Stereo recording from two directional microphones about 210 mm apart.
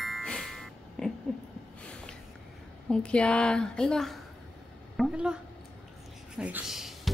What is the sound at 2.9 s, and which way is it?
A woman's voice, 5° left (ahead or behind).